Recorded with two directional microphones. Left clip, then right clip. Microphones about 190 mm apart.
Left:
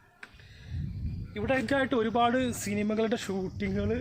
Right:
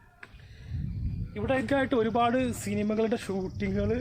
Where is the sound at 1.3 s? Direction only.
5° left (ahead or behind).